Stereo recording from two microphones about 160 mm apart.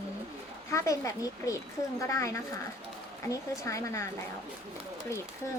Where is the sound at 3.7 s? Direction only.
20° left (ahead or behind).